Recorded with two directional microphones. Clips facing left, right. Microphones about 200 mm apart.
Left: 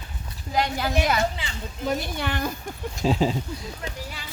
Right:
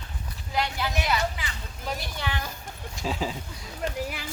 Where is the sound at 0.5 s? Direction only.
45° left (ahead or behind).